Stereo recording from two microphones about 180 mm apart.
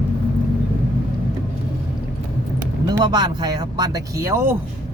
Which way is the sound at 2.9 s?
20° right (ahead or behind).